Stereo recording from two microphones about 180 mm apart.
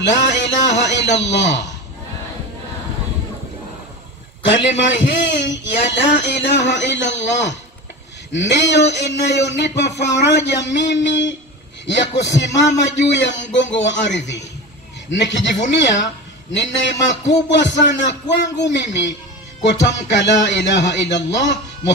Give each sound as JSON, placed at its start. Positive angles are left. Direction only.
{"t": 0.0, "sound": "music", "side_deg": 75}
{"t": 0.7, "sound": "speech", "side_deg": 75}
{"t": 4.5, "sound": "speech", "side_deg": 85}